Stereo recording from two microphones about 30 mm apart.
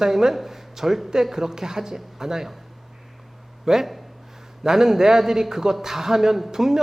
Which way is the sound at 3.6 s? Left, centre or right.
Centre.